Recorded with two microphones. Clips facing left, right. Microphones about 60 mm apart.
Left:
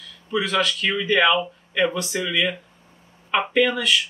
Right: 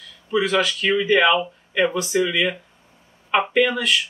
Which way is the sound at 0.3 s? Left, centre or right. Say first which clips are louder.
Right 2 dB; centre.